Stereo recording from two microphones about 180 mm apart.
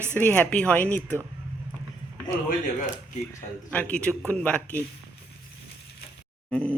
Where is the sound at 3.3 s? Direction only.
5° left (ahead or behind).